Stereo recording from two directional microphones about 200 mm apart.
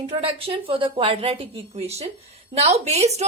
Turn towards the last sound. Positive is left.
turn(degrees=-35)  # may be behind; listen again after turning